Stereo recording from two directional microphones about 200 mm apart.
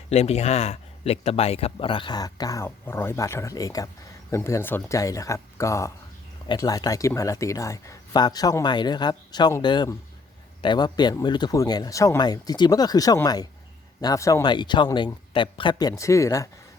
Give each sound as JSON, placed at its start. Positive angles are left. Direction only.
{"t": 0.1, "sound": "speech", "side_deg": 30}